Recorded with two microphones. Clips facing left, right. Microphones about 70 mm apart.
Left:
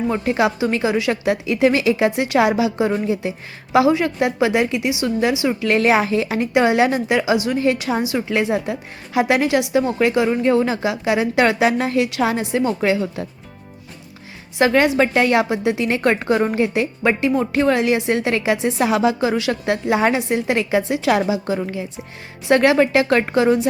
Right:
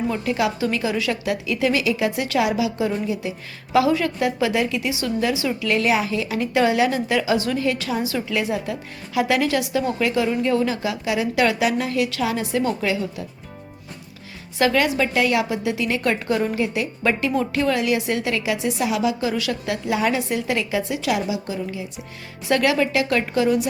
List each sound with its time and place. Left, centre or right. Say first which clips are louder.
0.1 s a woman's voice: left 4 dB; left
5.5 s a woman's voice: left 5 dB; left
6.4 s a woman's voice: left 2 dB; left
14.6 s a woman's voice: left 4 dB; left
21.1 s a woman's voice: left 6 dB; left
22.4 s a woman's voice: left 5 dB; left